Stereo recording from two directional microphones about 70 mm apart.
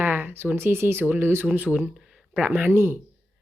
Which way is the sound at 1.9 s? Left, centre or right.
Centre.